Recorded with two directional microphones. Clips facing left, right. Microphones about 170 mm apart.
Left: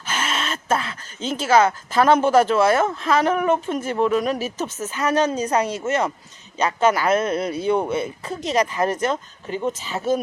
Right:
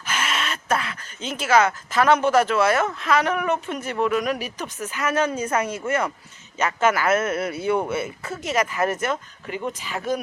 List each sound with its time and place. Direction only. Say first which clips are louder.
0.0 s speech: left 1 dB; 30° left (ahead or behind)
5.1 s a woman's voice: left 3 dB; 35° left (ahead or behind)
5.8 s speech: left 2 dB; 20° left (ahead or behind)